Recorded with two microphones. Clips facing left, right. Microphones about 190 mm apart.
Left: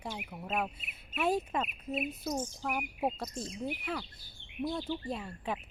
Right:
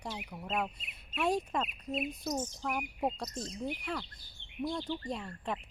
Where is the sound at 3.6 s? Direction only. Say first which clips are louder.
Left 1 dB; 5° left (ahead or behind).